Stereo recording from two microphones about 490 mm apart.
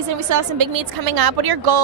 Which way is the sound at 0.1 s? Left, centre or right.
Right.